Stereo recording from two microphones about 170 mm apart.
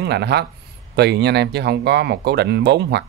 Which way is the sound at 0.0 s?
75° right (ahead or behind).